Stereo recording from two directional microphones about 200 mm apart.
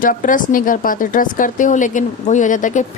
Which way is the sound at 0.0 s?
40° left (ahead or behind).